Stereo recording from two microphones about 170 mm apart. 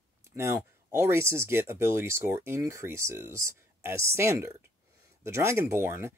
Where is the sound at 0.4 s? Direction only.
15° right (ahead or behind).